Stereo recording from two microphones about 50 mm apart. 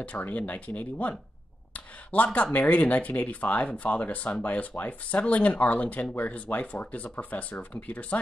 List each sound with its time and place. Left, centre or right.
0.0 s speech: left